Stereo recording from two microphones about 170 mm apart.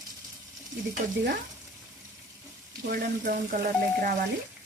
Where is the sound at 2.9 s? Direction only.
55° right (ahead or behind).